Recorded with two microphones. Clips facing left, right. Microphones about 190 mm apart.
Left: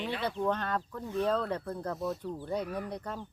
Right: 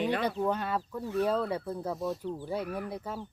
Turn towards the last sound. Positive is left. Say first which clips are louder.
# right 1 dB
turn(degrees=-5)  # may be behind; listen again after turning